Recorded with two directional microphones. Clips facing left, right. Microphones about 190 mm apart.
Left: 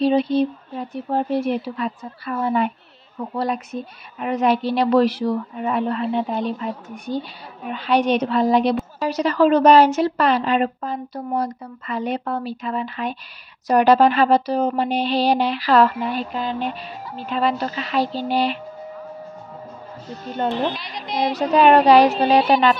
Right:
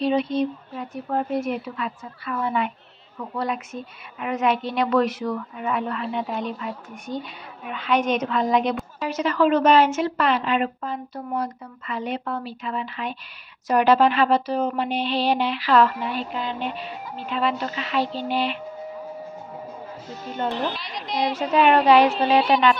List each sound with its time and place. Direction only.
0.0 s a woman's voice: 35° left (ahead or behind)
20.7 s speech: centre (ahead or behind)
21.3 s a woman's voice: 40° left (ahead or behind)